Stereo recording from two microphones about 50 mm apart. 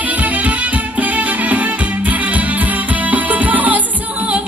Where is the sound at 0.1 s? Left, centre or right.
Right.